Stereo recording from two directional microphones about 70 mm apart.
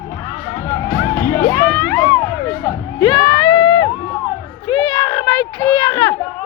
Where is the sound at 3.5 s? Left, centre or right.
Left.